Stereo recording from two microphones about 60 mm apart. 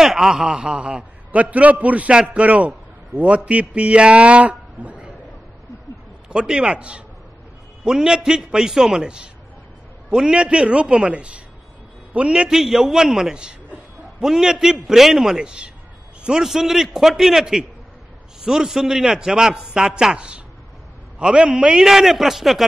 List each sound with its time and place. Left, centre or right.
0.0 s a man's voice: centre; by 5.1 s right
6.2 s a man's voice: centre